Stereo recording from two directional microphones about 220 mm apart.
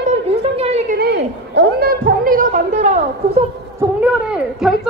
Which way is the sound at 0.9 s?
50° right (ahead or behind).